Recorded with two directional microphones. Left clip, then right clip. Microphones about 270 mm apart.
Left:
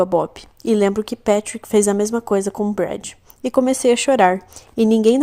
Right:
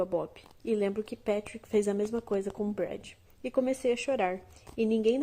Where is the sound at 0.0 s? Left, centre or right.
Left.